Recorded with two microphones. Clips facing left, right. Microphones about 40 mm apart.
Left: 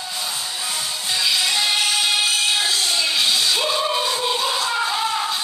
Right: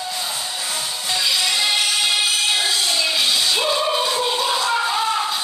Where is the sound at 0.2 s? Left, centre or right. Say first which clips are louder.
Right 1 dB; centre.